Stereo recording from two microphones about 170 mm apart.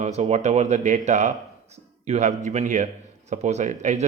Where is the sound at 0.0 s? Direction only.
40° right (ahead or behind).